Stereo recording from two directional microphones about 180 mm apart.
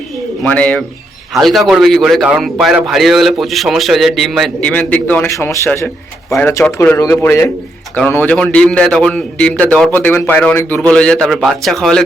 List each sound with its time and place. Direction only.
0.4 s a man's voice: 5° left (ahead or behind)